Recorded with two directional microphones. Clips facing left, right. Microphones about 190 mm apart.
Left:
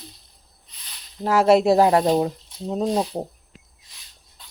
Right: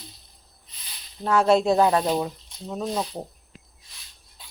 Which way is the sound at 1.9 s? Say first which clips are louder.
Left 5 dB; 35° left (ahead or behind).